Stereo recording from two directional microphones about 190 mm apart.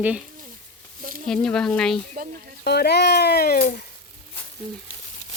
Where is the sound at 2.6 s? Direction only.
60° left (ahead or behind).